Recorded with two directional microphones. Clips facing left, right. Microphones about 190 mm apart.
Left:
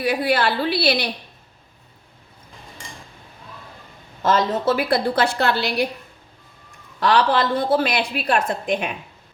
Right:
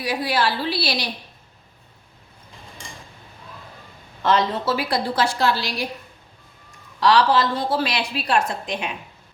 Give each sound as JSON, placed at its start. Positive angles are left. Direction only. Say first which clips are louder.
{"t": 0.0, "sound": "a woman's voice", "louder": "left 3 dB", "side_deg": 55}
{"t": 4.2, "sound": "a woman's voice", "louder": "left 1 dB", "side_deg": 45}
{"t": 7.0, "sound": "a woman's voice", "louder": "right 1 dB", "side_deg": 55}